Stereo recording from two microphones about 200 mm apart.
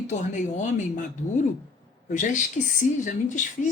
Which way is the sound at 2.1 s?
40° left (ahead or behind).